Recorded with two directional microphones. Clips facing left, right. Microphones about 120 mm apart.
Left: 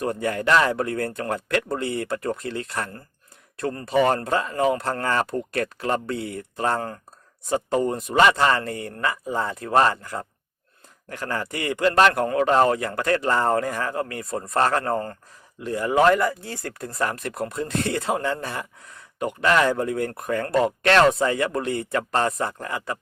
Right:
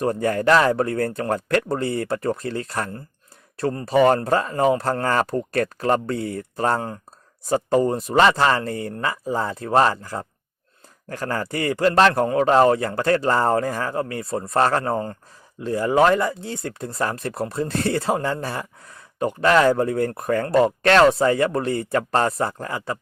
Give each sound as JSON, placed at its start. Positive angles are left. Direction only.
{"t": 0.0, "sound": "a man's voice", "side_deg": -35}